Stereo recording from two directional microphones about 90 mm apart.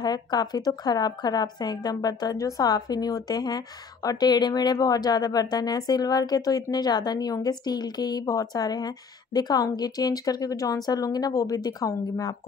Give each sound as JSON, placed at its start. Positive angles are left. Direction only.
{"t": 0.0, "sound": "a woman's voice", "side_deg": 50}